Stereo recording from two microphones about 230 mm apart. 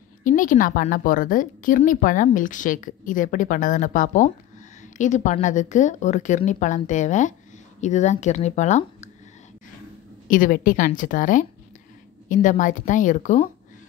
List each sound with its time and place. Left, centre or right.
0.2 s a woman's voice: left
10.2 s a woman's voice: left